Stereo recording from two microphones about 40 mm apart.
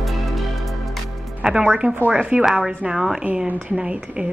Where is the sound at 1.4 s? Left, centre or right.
Centre.